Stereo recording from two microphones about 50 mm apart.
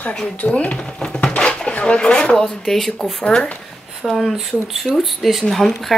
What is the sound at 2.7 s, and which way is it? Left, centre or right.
Speech, centre.